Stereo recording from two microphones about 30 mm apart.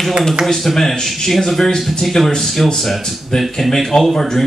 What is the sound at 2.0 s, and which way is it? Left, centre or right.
Speech, centre.